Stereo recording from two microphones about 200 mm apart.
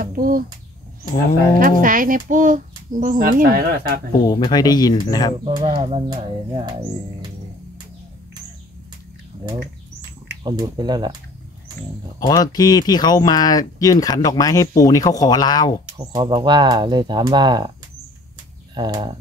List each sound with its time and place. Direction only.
0.0 s bird: 45° right (ahead or behind)
1.6 s speech: 45° right (ahead or behind)
4.3 s speech: 20° left (ahead or behind)
5.4 s speech: 25° right (ahead or behind)
10.4 s speech: 20° right (ahead or behind)
12.2 s speech: 20° left (ahead or behind)
16.0 s speech: 20° right (ahead or behind)
18.8 s speech: 20° right (ahead or behind)